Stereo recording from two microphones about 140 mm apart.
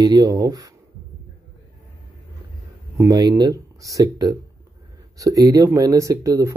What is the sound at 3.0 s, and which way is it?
Speech, 30° right (ahead or behind).